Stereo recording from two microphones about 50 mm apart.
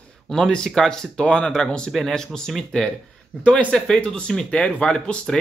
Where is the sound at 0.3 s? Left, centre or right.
Centre.